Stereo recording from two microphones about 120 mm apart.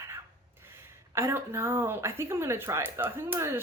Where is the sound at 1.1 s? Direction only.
20° right (ahead or behind).